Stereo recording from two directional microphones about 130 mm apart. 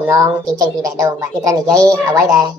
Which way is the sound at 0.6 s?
25° right (ahead or behind).